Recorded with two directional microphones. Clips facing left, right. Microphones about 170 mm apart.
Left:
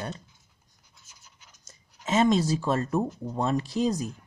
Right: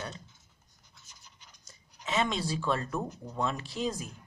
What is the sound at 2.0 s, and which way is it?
Speech, 45° left (ahead or behind).